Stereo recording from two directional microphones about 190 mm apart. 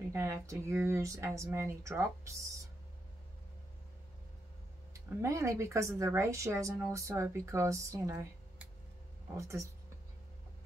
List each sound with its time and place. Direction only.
0.1 s speech: 15° right (ahead or behind)
4.9 s speech: 15° right (ahead or behind)